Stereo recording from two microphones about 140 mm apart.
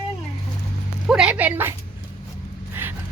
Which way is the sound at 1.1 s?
5° right (ahead or behind).